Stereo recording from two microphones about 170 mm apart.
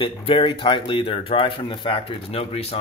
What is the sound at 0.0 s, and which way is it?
Speech, 30° left (ahead or behind).